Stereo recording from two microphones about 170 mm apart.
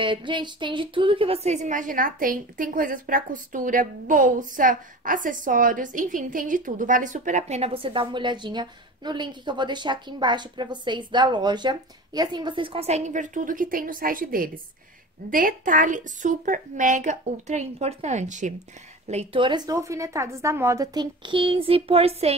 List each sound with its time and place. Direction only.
0.0 s a woman's voice: 30° right (ahead or behind)